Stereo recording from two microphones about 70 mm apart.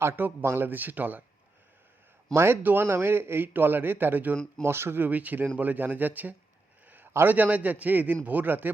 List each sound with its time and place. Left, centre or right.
0.0 s a man's voice: right
2.3 s a man's voice: right
6.8 s a sound: right
7.1 s a man's voice: right
7.3 s a man's voice: right